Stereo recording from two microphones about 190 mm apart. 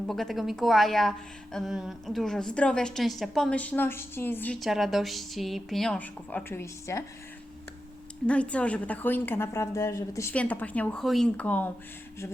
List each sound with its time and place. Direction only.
0.1 s a woman's voice: centre (ahead or behind)
4.6 s speech: centre (ahead or behind)
8.3 s a woman's voice: 5° left (ahead or behind)